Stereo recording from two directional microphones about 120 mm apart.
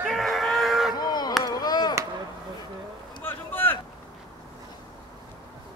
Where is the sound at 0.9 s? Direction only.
35° left (ahead or behind).